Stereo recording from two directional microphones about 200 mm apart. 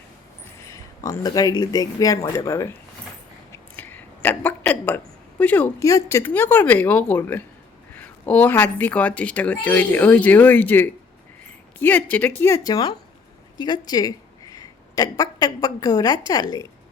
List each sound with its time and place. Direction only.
0.6 s speech: 15° left (ahead or behind)
3.5 s a sound: 10° left (ahead or behind)
5.4 s a woman's voice: 10° left (ahead or behind)